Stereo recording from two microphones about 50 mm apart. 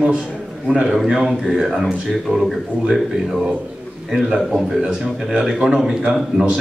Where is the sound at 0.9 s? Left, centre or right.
Centre.